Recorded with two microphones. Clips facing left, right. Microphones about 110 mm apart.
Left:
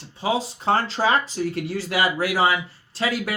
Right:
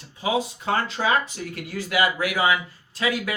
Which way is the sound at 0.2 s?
30° left (ahead or behind).